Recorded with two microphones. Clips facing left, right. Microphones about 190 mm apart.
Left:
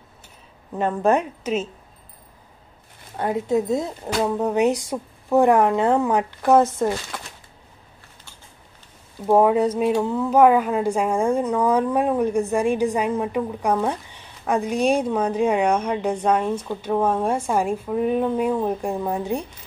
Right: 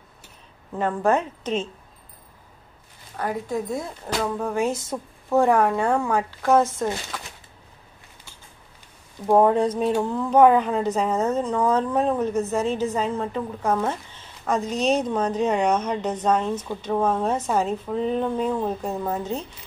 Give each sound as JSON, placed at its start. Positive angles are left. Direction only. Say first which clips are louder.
{"t": 0.7, "sound": "a woman's voice", "louder": "left 2 dB", "side_deg": 20}
{"t": 3.2, "sound": "speech", "louder": "left 5 dB", "side_deg": 25}
{"t": 9.2, "sound": "a woman's voice", "louder": "left 1 dB", "side_deg": 10}